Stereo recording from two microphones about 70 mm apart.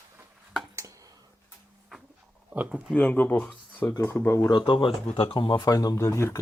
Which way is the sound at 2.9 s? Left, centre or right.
Left.